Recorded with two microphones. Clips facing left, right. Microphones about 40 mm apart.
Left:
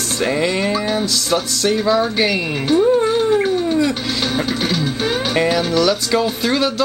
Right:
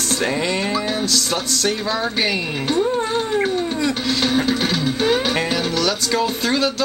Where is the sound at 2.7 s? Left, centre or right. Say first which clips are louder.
Left 7 dB; centre.